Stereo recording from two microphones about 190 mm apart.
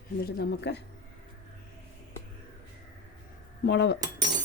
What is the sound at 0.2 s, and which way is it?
Speech, 60° left (ahead or behind).